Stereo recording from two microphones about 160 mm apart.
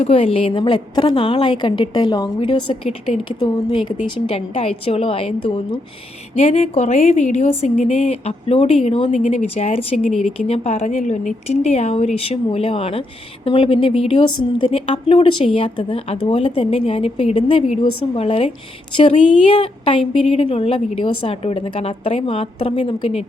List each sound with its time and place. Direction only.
0.0 s speech: 40° left (ahead or behind)
10.1 s speech: centre (ahead or behind)
10.3 s speech: 40° left (ahead or behind)